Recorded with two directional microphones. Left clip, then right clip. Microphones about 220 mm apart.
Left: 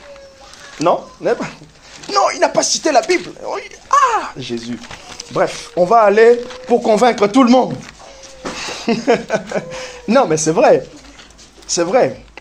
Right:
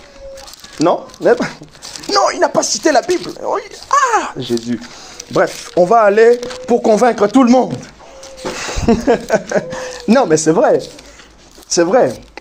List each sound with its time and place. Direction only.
0.7 s speech: 20° right (ahead or behind)
7.4 s speech: 20° right (ahead or behind)
8.5 s a sound: 20° right (ahead or behind)
8.9 s speech: 20° right (ahead or behind)